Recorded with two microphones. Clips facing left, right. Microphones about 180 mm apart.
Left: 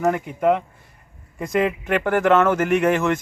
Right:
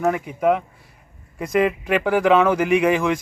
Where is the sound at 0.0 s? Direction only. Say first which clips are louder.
Even; centre (ahead or behind).